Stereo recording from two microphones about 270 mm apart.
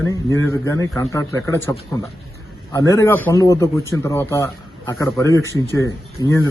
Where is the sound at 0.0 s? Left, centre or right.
Centre.